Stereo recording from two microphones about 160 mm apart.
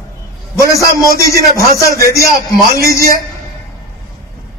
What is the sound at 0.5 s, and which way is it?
A man's voice, 20° left (ahead or behind).